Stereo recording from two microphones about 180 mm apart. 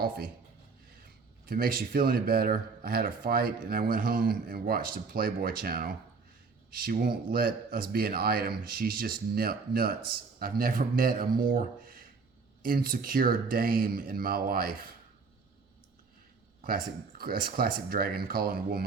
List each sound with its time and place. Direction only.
1.5 s speech: 55° right (ahead or behind)
16.6 s speech: 50° right (ahead or behind)